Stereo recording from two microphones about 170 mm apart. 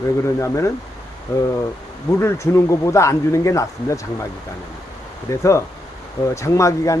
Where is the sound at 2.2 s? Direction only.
15° left (ahead or behind).